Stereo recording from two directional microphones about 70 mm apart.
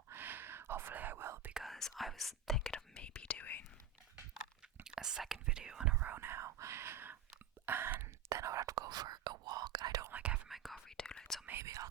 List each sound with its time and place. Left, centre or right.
0.1 s whispering: right
1.6 s whispering: centre
2.7 s whispering: centre
4.8 s whispering: centre
6.0 s whispering: right
7.6 s a sound: right
8.3 s whispering: right
10.1 s whispering: centre
10.5 s whispering: centre
10.9 s whispering: centre
11.6 s whispering: right